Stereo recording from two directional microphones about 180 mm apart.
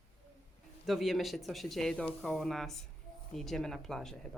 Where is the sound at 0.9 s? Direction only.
Centre (ahead or behind).